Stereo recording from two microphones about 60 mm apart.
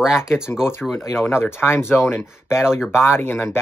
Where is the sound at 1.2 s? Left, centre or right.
Left.